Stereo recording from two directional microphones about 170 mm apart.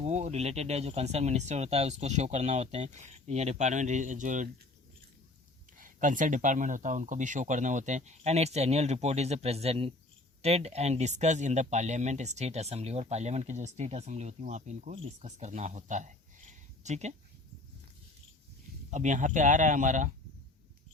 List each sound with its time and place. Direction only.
0.0 s speech: 40° right (ahead or behind)
5.7 s speech: 50° right (ahead or behind)
18.9 s speech: 45° right (ahead or behind)